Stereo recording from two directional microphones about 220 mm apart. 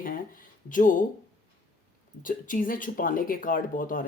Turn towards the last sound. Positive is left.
turn(degrees=40)  # may be behind; listen again after turning